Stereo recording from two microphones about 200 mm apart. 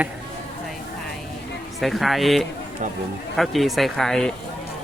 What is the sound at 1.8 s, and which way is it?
Speech, centre (ahead or behind).